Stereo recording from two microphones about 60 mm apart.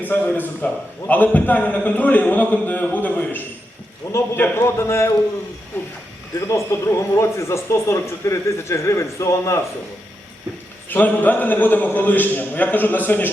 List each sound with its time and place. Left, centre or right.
0.1 s a man's voice: left
4.0 s a man's voice: left
5.7 s a man's voice: left
6.5 s speech: left
10.8 s a man's voice: left